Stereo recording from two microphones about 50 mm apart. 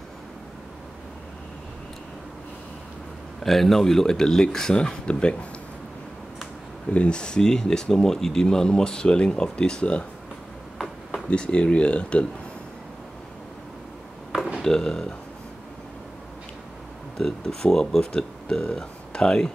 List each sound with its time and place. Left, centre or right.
3.4 s speech: centre; by 5.5 s left
6.9 s speech: left
11.2 s speech: left
14.6 s speech: centre
17.2 s speech: centre